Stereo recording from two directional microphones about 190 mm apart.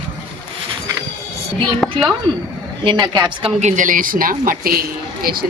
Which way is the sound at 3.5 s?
40° right (ahead or behind).